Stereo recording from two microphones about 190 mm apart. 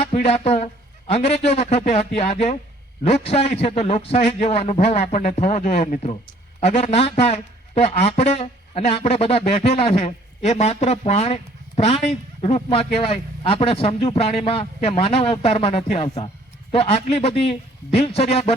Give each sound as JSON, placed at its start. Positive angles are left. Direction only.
{"t": 0.0, "sound": "a man's voice", "side_deg": 35}